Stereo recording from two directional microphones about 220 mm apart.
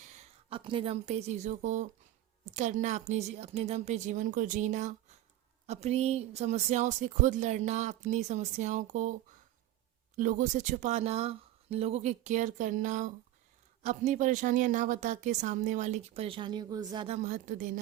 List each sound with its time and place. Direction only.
0.2 s speech: 25° right (ahead or behind)
10.2 s speech: 35° right (ahead or behind)